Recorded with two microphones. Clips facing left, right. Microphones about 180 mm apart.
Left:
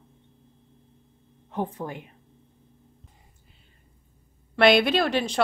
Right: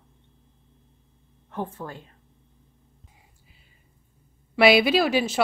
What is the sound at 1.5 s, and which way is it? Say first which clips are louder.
Speech: left 2 dB; 15° left (ahead or behind).